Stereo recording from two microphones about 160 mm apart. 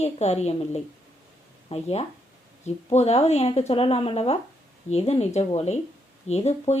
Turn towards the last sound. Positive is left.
turn(degrees=45)  # may be behind; listen again after turning